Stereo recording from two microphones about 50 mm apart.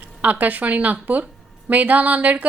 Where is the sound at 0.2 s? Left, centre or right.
Right.